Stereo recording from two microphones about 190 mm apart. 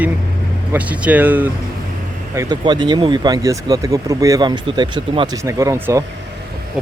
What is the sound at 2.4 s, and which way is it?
Speech, 20° right (ahead or behind).